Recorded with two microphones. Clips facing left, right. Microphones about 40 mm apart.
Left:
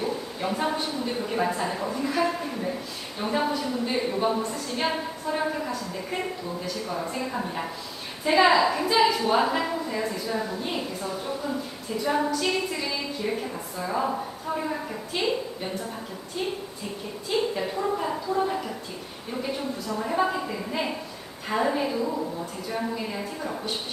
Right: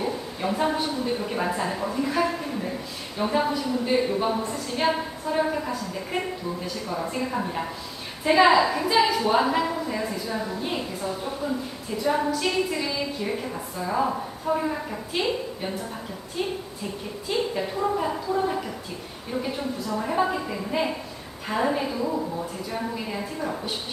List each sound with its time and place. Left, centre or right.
0.4 s a woman's voice: centre
12.0 s a woman's voice: centre
17.2 s a woman's voice: centre
20.0 s a woman's voice: centre
23.4 s a woman's voice: centre